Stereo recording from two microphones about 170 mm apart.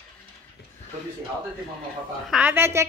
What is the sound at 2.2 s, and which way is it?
Speech, 5° right (ahead or behind).